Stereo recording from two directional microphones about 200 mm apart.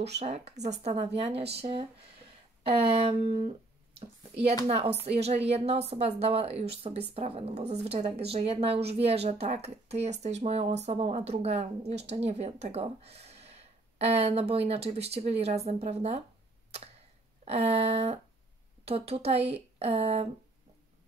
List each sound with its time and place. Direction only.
0.2 s speech: 30° right (ahead or behind)
4.6 s speech: 30° right (ahead or behind)
17.5 s speech: 30° right (ahead or behind)